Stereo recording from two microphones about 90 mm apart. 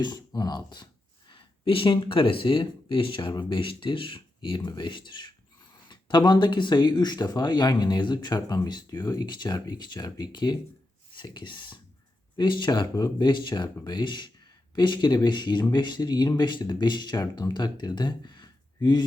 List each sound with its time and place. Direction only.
0.0 s speech: 45° left (ahead or behind)
1.3 s speech: 80° left; by 19.0 s 50° left (ahead or behind)